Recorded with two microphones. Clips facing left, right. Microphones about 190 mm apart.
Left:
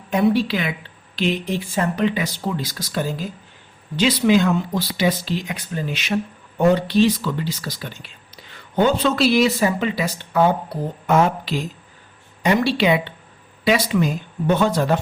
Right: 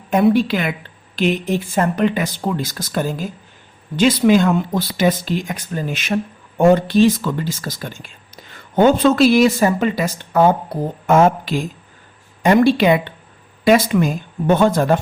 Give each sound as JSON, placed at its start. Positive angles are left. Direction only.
{"t": 0.1, "sound": "speech", "side_deg": -50}